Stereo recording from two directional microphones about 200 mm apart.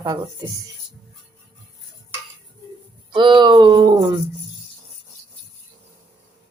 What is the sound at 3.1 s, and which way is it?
Speech, 25° right (ahead or behind).